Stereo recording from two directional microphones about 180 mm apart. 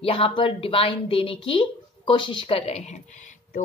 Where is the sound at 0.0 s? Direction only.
30° left (ahead or behind).